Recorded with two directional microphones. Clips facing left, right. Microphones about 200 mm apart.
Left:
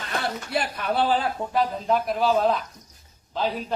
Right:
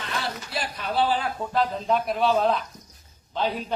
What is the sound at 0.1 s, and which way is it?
Speech, 55° left (ahead or behind).